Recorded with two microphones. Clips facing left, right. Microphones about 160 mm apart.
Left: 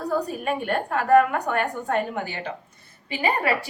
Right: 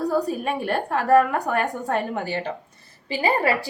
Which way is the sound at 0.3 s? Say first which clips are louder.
Right 1 dB; 35° right (ahead or behind).